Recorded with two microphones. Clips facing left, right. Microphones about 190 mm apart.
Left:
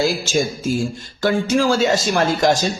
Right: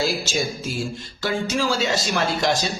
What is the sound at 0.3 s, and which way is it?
A man's voice, 50° left (ahead or behind).